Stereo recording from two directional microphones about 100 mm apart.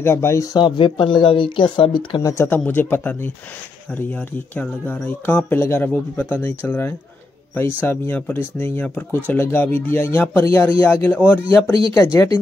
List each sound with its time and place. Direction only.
0.0 s speech: 25° left (ahead or behind); by 2.2 s 55° left (ahead or behind)
2.3 s speech: 20° left (ahead or behind)